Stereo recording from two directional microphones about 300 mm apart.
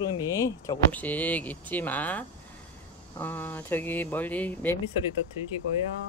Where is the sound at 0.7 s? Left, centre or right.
Centre.